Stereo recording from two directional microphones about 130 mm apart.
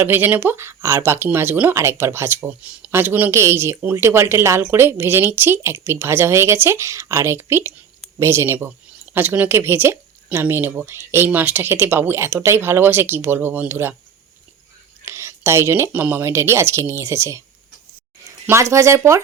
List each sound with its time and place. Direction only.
0.0 s speech: 15° right (ahead or behind)
15.0 s speech: 20° right (ahead or behind)
18.4 s speech: 20° right (ahead or behind)